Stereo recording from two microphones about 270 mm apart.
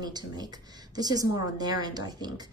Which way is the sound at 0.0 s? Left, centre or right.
Centre.